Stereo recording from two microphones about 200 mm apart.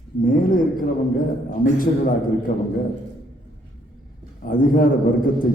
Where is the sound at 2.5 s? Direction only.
40° left (ahead or behind).